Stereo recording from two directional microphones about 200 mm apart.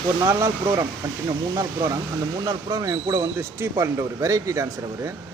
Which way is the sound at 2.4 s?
20° right (ahead or behind).